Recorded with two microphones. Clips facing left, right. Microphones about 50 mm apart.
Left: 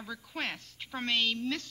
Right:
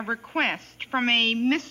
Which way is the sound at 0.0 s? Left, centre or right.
Right.